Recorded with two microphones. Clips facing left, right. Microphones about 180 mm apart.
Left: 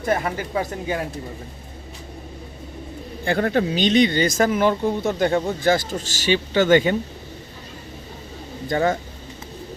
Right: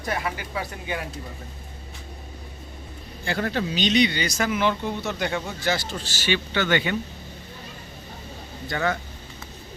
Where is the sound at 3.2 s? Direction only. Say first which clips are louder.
Left 6 dB; 50° left (ahead or behind).